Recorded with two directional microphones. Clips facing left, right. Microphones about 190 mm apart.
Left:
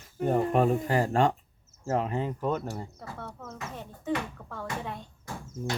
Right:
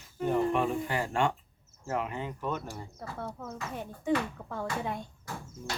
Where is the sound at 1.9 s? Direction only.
35° left (ahead or behind).